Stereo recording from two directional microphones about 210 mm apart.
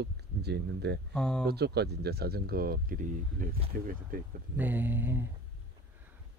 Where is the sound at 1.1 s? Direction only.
5° left (ahead or behind).